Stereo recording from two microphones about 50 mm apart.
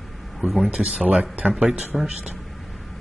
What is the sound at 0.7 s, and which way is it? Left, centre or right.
Speech, centre.